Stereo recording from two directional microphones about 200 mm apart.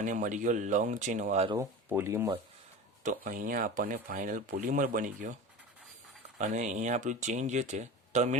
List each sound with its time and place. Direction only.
0.0 s speech: 40° right (ahead or behind)
1.5 s speech: 15° right (ahead or behind)
3.0 s speech: 40° right (ahead or behind)
6.4 s speech: 35° right (ahead or behind)